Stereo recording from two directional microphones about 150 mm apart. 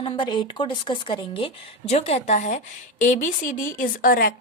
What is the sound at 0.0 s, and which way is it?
A woman's voice, 30° left (ahead or behind).